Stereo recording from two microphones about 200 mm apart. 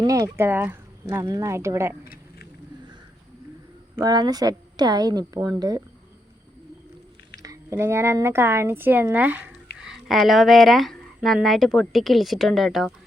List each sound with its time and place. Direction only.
0.0 s speech: 15° right (ahead or behind)
4.0 s a woman's voice: 20° right (ahead or behind)
7.4 s speech: 15° right (ahead or behind); by 12.9 s centre (ahead or behind)